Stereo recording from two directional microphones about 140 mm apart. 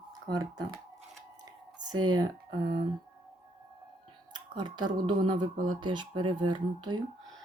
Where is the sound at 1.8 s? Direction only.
30° right (ahead or behind).